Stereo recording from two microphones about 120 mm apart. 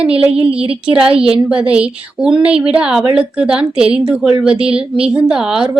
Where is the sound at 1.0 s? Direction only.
50° right (ahead or behind).